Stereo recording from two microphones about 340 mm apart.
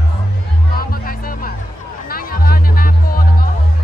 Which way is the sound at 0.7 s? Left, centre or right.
Left.